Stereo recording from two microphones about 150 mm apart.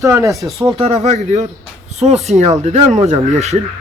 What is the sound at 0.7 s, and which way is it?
Speech, 40° right (ahead or behind).